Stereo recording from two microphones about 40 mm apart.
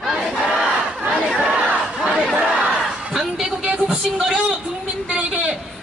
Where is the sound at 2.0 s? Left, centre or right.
Right.